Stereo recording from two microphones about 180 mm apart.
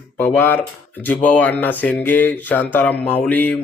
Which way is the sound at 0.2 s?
10° left (ahead or behind).